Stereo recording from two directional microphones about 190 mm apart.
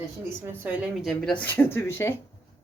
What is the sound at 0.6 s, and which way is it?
Speech, 5° right (ahead or behind).